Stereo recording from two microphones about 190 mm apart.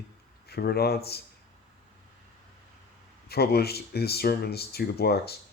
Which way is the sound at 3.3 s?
55° left (ahead or behind).